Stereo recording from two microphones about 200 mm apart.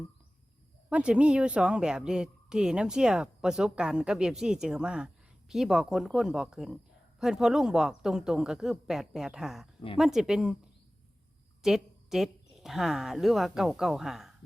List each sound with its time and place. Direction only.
0.9 s a woman's voice: 5° right (ahead or behind)
11.6 s speech: centre (ahead or behind)